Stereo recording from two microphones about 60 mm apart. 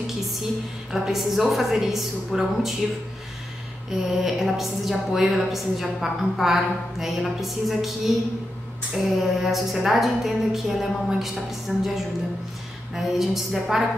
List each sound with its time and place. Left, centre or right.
0.0 s a sound: centre
1.0 s a woman's voice: centre
4.1 s a woman's voice: centre